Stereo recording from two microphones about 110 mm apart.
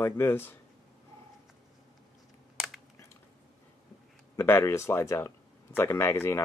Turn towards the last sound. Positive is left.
turn(degrees=20)  # may be behind; listen again after turning